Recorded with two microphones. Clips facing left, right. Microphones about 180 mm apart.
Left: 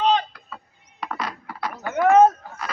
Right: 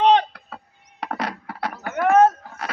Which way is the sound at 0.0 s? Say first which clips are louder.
Right 4 dB; 70° right (ahead or behind).